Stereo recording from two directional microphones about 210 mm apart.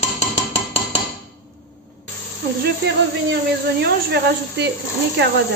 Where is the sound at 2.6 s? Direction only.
55° right (ahead or behind).